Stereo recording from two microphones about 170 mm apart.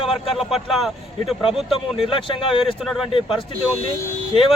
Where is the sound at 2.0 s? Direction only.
30° left (ahead or behind).